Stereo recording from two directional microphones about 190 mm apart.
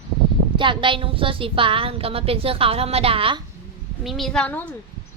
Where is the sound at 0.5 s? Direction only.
25° right (ahead or behind).